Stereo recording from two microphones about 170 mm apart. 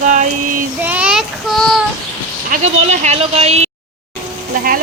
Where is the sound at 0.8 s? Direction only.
10° right (ahead or behind).